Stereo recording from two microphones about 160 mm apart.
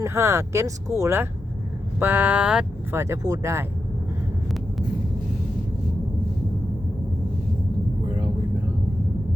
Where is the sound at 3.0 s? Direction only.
20° right (ahead or behind).